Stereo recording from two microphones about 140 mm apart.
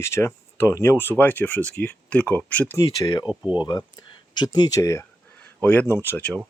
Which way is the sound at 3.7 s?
30° left (ahead or behind).